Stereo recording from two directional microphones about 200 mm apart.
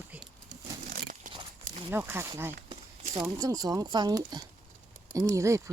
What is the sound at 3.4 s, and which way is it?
Speech, 20° right (ahead or behind).